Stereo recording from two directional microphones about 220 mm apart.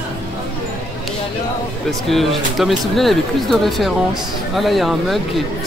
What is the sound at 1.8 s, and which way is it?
Speech, centre (ahead or behind).